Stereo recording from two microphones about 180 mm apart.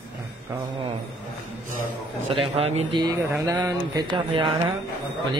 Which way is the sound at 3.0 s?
15° right (ahead or behind).